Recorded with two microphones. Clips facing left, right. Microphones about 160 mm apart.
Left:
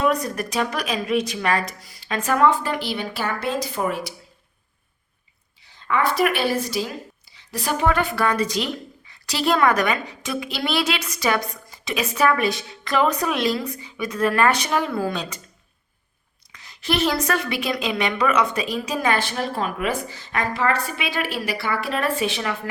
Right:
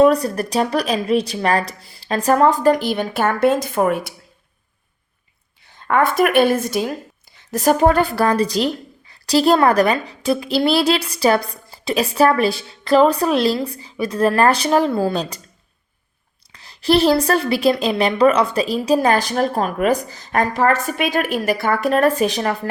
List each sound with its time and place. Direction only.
0.0 s a woman's voice: 35° right (ahead or behind); by 4.1 s 55° right (ahead or behind)
5.6 s a woman's voice: 50° right (ahead or behind); by 15.4 s 35° right (ahead or behind)
16.5 s a woman's voice: 35° right (ahead or behind)